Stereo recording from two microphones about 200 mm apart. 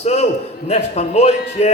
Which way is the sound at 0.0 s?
35° left (ahead or behind).